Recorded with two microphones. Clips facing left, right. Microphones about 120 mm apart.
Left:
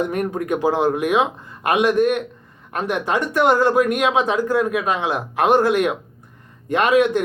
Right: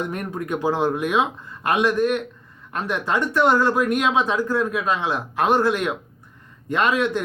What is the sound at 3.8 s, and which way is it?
Speech, 55° left (ahead or behind).